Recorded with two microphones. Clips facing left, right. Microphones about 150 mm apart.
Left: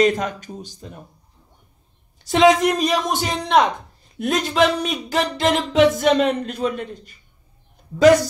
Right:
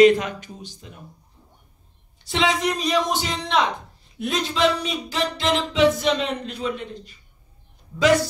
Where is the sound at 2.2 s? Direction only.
45° left (ahead or behind).